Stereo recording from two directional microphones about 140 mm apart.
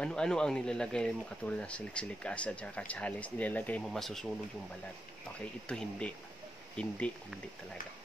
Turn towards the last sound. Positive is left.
turn(degrees=75)  # may be behind; listen again after turning